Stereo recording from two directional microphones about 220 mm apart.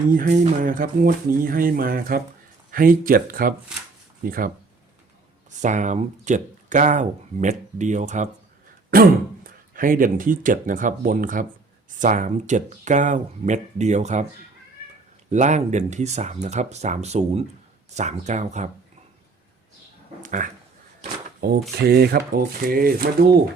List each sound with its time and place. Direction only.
0.1 s speech: 40° right (ahead or behind)
15.3 s speech: 30° right (ahead or behind)
20.2 s speech: 35° right (ahead or behind)
21.0 s a sound: 45° right (ahead or behind)
21.8 s speech: 45° right (ahead or behind)